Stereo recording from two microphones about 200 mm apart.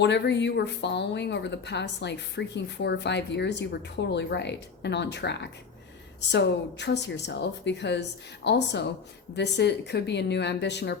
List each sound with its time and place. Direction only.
0.0 s speech: 60° left (ahead or behind)